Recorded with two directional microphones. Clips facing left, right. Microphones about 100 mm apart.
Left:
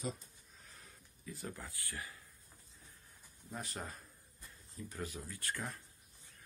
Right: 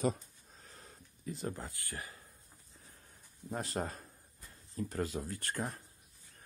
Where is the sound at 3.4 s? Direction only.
40° right (ahead or behind).